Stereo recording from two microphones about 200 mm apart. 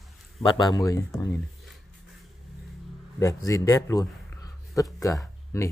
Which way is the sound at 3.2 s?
15° left (ahead or behind).